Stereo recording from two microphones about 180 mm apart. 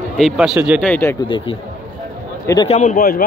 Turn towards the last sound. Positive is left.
turn(degrees=55)  # may be behind; listen again after turning